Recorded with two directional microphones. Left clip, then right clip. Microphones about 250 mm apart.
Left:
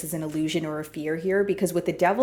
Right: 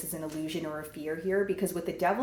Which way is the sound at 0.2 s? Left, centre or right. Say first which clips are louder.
Left 8 dB; left.